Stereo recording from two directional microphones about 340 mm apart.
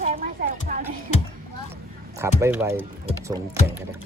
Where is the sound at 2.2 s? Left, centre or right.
Centre.